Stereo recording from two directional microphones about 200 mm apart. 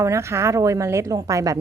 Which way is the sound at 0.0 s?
15° right (ahead or behind).